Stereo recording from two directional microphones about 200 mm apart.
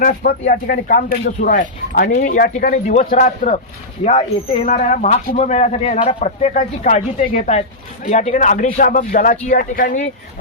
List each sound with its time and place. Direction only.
0.0 s speech: 45° left (ahead or behind)